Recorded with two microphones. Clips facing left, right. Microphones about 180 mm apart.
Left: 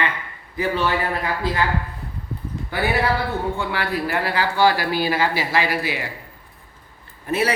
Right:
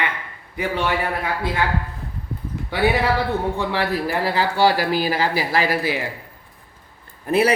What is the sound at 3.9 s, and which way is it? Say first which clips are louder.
Speech: right 1 dB; 35° right (ahead or behind).